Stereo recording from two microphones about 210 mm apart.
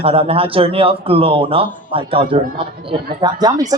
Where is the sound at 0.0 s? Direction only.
30° right (ahead or behind).